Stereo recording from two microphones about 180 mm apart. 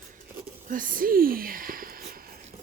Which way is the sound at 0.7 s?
50° right (ahead or behind).